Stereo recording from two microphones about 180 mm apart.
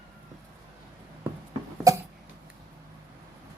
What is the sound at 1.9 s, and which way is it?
Cough, 20° right (ahead or behind).